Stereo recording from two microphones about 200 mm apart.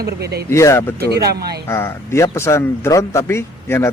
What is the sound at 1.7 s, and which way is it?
Speech, 15° left (ahead or behind).